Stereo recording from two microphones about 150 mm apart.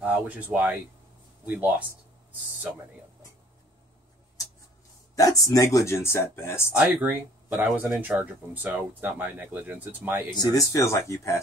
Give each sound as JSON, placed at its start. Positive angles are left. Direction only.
{"t": 0.0, "sound": "speech", "side_deg": -10}
{"t": 5.1, "sound": "speech", "side_deg": 20}
{"t": 6.7, "sound": "speech", "side_deg": -10}
{"t": 10.3, "sound": "speech", "side_deg": 25}